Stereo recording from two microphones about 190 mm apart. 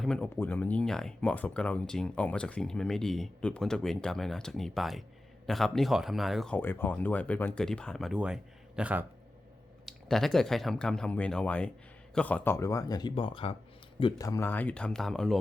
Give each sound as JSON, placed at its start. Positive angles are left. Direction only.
{"t": 0.0, "sound": "speech", "side_deg": 5}
{"t": 14.0, "sound": "speech", "side_deg": 20}